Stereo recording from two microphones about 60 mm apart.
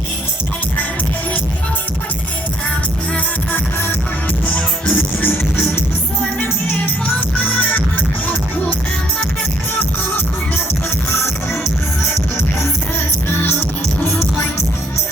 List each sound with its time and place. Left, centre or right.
4.5 s music: left